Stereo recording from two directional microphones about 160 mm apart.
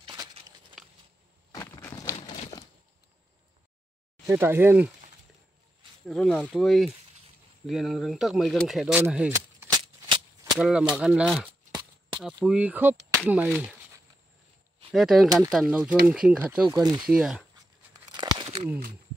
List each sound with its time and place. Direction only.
0.0 s a sound: 30° right (ahead or behind)
1.5 s walk: 15° left (ahead or behind)
2.0 s a sound: 20° left (ahead or behind)
4.3 s speech: 15° right (ahead or behind)
6.0 s speech: 5° left (ahead or behind)
9.7 s rattle: 25° right (ahead or behind)
10.6 s speech: 5° right (ahead or behind)
14.9 s speech: centre (ahead or behind)
18.1 s crumpling: 30° right (ahead or behind)